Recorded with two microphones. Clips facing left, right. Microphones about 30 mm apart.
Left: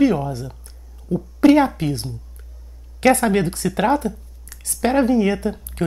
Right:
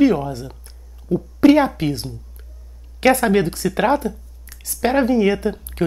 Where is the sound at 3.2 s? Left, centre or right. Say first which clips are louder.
Right 2 dB; centre.